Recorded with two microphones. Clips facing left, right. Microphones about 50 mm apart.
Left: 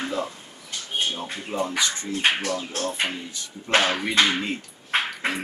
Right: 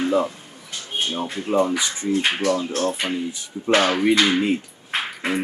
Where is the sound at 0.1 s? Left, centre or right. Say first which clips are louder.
Right 8 dB; right.